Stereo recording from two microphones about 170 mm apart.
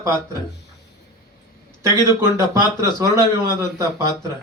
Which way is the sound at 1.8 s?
15° right (ahead or behind).